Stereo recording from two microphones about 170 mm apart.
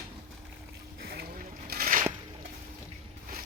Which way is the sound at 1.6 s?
55° right (ahead or behind).